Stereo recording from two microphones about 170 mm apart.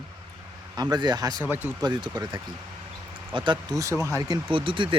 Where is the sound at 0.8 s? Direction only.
25° right (ahead or behind).